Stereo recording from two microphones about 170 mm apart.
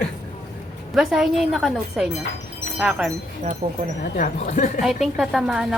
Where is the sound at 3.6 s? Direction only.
40° right (ahead or behind).